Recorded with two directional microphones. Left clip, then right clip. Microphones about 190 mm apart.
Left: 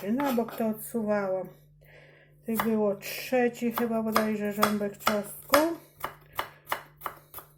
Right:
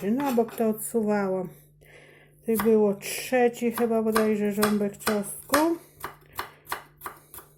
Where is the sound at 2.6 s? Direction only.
45° right (ahead or behind).